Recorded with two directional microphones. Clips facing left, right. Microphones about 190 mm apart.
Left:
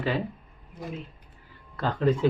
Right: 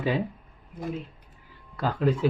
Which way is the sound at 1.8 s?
10° right (ahead or behind).